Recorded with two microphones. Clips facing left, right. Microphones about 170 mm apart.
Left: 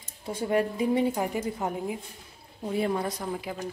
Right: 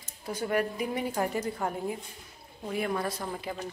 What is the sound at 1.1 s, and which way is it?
Dishes, 15° left (ahead or behind).